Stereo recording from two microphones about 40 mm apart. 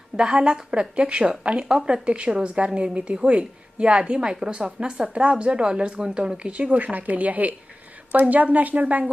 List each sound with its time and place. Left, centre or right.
0.3 s a woman's voice: right
6.7 s a woman's voice: right